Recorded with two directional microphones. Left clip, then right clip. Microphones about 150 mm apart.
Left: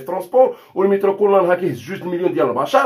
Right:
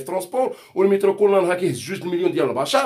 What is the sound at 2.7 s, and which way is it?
Speech, 20° right (ahead or behind).